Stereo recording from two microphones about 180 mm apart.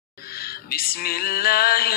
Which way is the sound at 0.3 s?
55° left (ahead or behind).